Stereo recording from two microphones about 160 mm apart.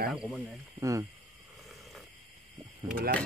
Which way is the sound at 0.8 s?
20° right (ahead or behind).